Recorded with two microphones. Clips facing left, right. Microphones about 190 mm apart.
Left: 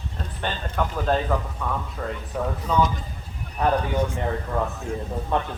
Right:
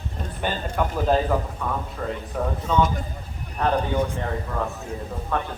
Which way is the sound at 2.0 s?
Centre (ahead or behind).